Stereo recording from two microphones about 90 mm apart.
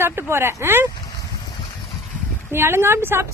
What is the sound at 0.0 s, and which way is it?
Speech, 25° right (ahead or behind).